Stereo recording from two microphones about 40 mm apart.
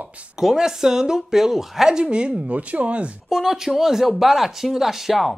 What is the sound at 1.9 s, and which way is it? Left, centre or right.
Speech, right.